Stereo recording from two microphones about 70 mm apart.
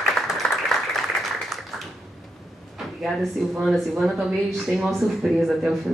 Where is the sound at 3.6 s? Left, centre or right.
Centre.